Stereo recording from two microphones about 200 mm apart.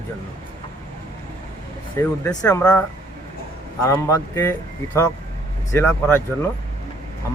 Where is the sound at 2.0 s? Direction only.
15° left (ahead or behind).